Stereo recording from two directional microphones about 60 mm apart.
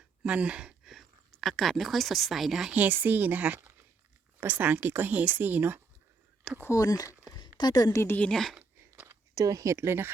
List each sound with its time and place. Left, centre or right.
0.2 s speech: centre
0.9 s a woman's voice: centre
2.7 s speech: right
6.7 s speech: left
7.7 s a woman's voice: left
8.3 s speech: centre
9.3 s speech: right
9.7 s speech: right